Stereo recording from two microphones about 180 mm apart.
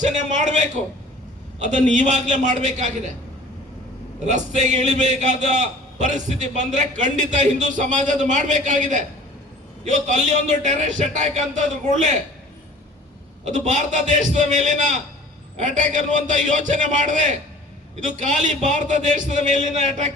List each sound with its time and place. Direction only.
0.0 s a man's voice: 40° right (ahead or behind)
4.3 s a man's voice: 40° right (ahead or behind)
13.4 s a man's voice: 40° right (ahead or behind)